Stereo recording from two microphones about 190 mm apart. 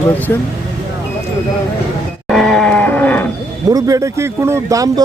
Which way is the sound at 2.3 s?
Centre (ahead or behind).